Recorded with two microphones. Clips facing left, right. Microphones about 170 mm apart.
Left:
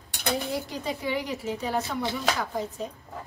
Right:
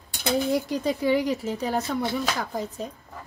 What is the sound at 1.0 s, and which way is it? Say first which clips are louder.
Speech: right 7 dB; 40° right (ahead or behind).